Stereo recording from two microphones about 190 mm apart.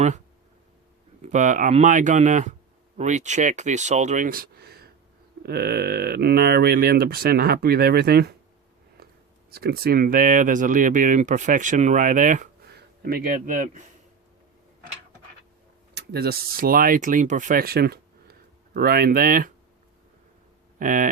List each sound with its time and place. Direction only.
1.2 s speech: 40° right (ahead or behind); by 8.3 s 55° right (ahead or behind)
9.5 s speech: 55° right (ahead or behind)
12.7 s speech: 55° right (ahead or behind)
16.0 s speech: 55° right (ahead or behind)
20.7 s speech: 45° right (ahead or behind)